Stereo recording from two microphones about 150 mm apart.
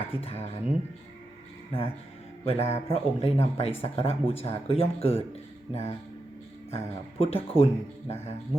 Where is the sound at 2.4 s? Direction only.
40° left (ahead or behind).